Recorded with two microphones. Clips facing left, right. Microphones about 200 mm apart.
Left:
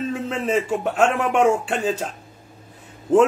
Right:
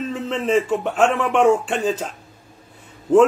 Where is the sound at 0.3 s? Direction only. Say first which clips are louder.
Right 4 dB; 10° left (ahead or behind).